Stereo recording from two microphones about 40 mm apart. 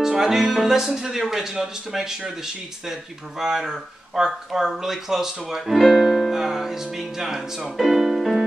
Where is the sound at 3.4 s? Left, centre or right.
Centre.